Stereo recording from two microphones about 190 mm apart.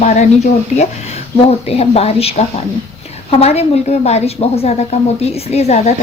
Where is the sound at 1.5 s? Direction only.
30° left (ahead or behind).